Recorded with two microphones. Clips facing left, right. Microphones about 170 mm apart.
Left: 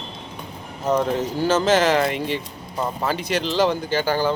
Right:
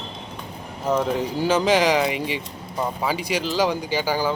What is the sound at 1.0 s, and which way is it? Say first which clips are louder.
Speech: left 1 dB; 10° right (ahead or behind).